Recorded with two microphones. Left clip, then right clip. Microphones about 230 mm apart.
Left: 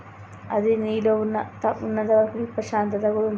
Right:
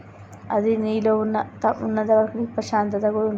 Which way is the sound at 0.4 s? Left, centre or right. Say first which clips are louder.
Even; centre.